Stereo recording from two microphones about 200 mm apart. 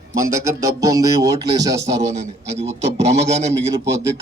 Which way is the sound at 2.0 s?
35° right (ahead or behind).